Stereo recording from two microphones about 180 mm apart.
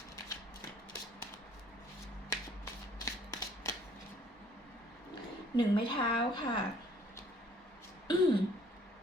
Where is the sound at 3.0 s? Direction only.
15° left (ahead or behind).